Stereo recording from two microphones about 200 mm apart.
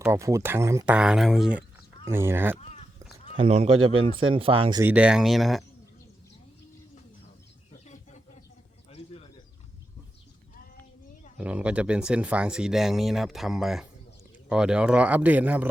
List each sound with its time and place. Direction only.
0.0 s speech: 15° right (ahead or behind)
2.6 s a sound: 30° left (ahead or behind)
3.3 s speech: 30° right (ahead or behind)
4.8 s speech: 10° right (ahead or behind)
8.9 s bird: 30° left (ahead or behind)
11.3 s speech: 5° right (ahead or behind)